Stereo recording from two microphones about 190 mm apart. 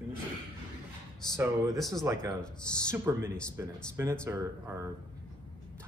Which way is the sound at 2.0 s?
20° right (ahead or behind).